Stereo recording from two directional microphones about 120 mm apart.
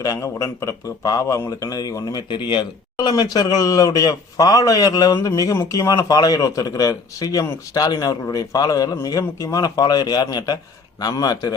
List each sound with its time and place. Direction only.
0.0 s a man's voice: 30° left (ahead or behind)